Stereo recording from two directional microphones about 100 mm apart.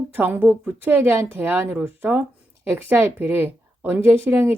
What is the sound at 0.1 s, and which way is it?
A woman's voice, 20° right (ahead or behind).